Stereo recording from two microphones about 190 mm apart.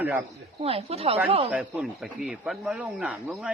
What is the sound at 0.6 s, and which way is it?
Speech, 30° right (ahead or behind).